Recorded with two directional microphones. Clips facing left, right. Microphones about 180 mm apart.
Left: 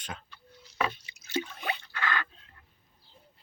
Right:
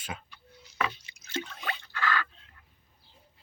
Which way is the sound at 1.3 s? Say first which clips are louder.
Left 3 dB; 15° left (ahead or behind).